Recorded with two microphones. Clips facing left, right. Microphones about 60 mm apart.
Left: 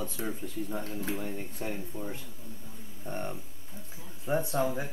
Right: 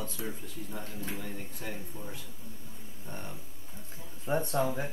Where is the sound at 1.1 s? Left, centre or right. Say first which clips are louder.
Left 4 dB; left.